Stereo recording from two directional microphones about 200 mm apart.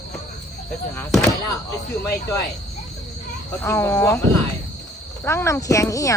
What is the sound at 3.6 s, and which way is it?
Speech, 15° left (ahead or behind).